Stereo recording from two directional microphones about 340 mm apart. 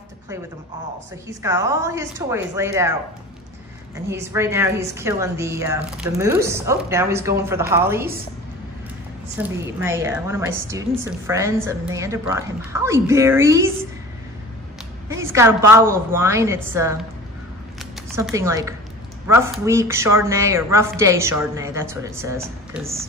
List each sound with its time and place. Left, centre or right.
1.4 s a woman's voice: centre
4.1 s a woman's voice: centre
9.4 s a woman's voice: centre
15.0 s a woman's voice: centre
18.1 s a woman's voice: centre